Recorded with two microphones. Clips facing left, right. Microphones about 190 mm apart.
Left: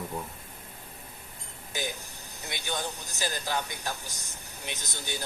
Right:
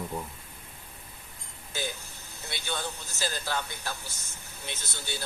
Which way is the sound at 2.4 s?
15° left (ahead or behind).